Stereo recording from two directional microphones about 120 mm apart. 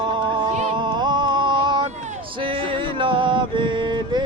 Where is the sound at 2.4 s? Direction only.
45° right (ahead or behind).